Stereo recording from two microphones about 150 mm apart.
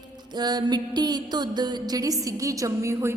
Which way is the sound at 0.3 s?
25° right (ahead or behind).